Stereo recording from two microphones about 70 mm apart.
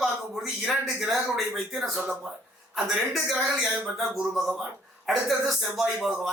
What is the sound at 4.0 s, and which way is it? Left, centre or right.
Speech, centre.